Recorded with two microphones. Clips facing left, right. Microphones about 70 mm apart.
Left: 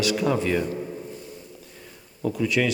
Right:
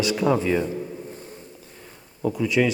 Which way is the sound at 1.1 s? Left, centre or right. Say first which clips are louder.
Even; right.